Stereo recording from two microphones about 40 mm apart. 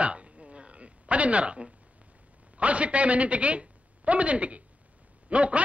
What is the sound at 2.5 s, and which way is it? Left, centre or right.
A woman's voice, right.